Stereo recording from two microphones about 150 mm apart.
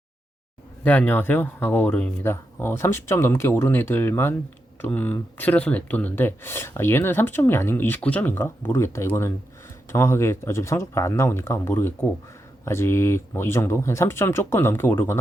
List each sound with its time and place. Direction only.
0.9 s speech: 10° left (ahead or behind)